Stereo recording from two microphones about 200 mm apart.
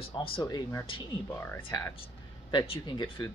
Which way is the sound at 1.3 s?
10° left (ahead or behind).